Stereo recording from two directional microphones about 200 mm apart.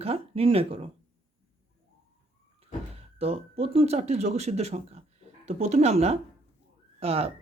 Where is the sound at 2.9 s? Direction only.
30° right (ahead or behind).